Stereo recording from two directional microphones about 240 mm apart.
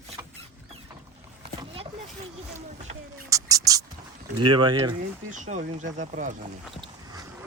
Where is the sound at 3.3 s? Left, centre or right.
Centre.